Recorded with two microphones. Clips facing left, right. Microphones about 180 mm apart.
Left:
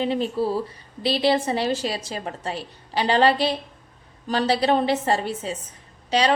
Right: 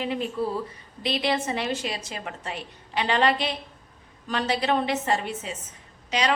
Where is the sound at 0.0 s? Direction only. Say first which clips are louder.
Left 4 dB; 30° left (ahead or behind).